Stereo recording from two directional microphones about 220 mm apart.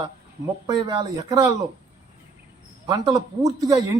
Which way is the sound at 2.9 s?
20° right (ahead or behind).